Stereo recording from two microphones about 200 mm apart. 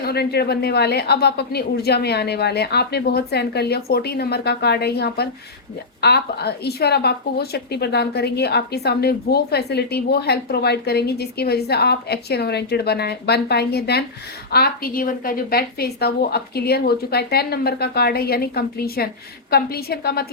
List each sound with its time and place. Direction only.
0.0 s speech: 55° left (ahead or behind)